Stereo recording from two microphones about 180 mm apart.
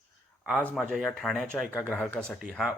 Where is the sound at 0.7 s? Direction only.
Centre (ahead or behind).